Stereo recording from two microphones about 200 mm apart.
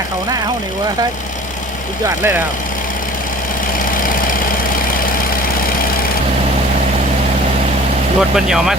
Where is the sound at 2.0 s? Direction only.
10° right (ahead or behind).